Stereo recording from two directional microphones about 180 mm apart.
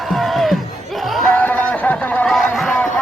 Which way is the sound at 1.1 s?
5° left (ahead or behind).